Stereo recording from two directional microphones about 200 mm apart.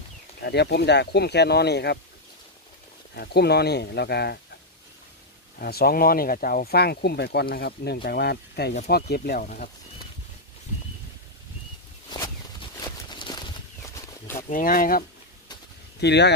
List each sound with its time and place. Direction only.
0.4 s speech: 55° left (ahead or behind)
3.2 s speech: 55° left (ahead or behind)
5.6 s speech: 50° left (ahead or behind)
13.1 s a sound: 20° left (ahead or behind)
14.5 s speech: 45° left (ahead or behind)
16.0 s speech: 60° left (ahead or behind)